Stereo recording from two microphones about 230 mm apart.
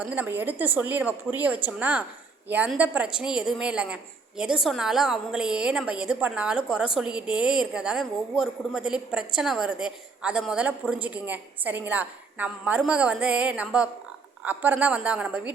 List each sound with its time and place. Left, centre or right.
0.0 s a woman's voice: centre